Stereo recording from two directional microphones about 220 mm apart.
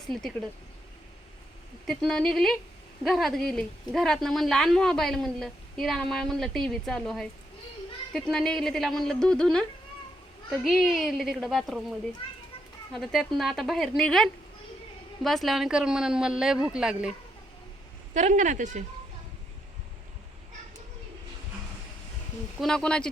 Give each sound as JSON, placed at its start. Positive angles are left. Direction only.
{"t": 0.1, "sound": "a woman's voice", "side_deg": 0}
{"t": 1.9, "sound": "a woman's voice", "side_deg": 5}
{"t": 18.1, "sound": "speech", "side_deg": -35}
{"t": 22.6, "sound": "a woman's voice", "side_deg": 5}